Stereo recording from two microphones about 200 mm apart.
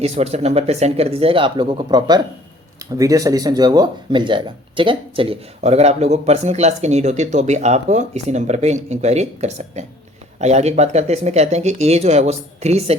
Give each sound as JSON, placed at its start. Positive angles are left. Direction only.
{"t": 0.0, "sound": "speech", "side_deg": -30}